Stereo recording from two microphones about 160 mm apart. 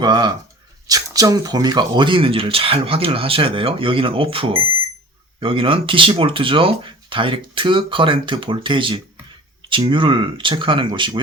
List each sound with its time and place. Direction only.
0.0 s speech: 25° right (ahead or behind)